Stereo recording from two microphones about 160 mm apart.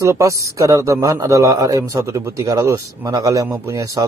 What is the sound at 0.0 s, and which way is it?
A man's voice, 20° right (ahead or behind).